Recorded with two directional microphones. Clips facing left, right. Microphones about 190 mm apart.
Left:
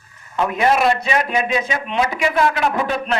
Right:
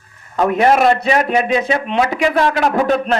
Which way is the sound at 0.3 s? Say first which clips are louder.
Right 4 dB; 40° right (ahead or behind).